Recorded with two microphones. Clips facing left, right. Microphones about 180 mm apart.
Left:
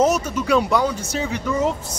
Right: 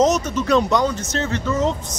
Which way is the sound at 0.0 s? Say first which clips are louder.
Right 1 dB; 10° left (ahead or behind).